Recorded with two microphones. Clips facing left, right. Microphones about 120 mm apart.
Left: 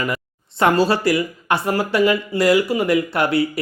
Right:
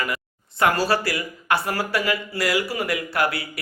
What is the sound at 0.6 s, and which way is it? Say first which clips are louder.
Speech: left 4 dB; 25° left (ahead or behind).